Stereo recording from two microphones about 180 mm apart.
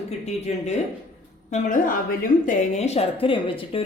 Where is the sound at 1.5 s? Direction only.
50° left (ahead or behind).